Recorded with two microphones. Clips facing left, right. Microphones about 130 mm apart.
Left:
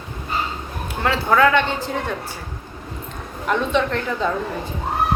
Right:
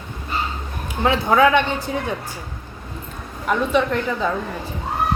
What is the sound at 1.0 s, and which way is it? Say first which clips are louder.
Speech: right 1 dB; 15° right (ahead or behind).